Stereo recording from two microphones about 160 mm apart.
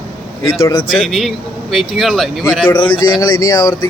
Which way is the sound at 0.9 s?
Centre (ahead or behind).